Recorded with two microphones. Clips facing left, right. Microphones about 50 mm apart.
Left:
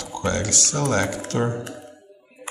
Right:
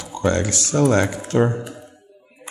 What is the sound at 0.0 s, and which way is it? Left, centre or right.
Speech, centre.